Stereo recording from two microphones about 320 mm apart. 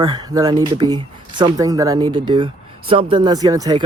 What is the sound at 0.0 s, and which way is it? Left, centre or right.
Speech, centre.